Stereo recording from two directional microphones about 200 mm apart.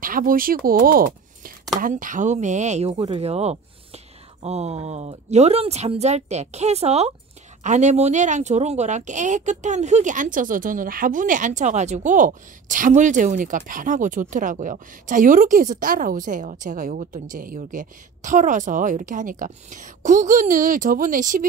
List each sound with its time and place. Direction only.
0.0 s a woman's voice: 45° right (ahead or behind)